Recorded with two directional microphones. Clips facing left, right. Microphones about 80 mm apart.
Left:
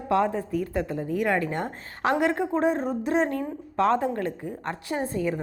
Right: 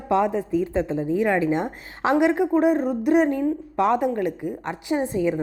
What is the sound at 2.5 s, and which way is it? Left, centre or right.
A woman's voice, centre.